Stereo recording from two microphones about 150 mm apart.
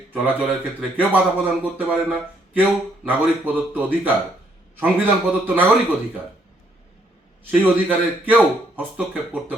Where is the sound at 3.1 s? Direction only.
10° right (ahead or behind).